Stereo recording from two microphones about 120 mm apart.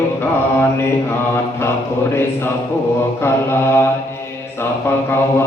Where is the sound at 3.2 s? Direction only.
20° left (ahead or behind).